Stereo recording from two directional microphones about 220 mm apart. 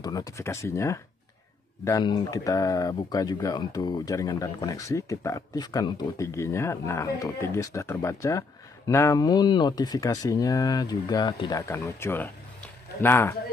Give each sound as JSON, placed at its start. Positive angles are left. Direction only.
{"t": 0.0, "sound": "speech", "side_deg": 15}